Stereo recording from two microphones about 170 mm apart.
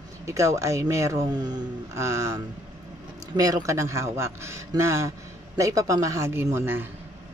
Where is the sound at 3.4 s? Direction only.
20° right (ahead or behind).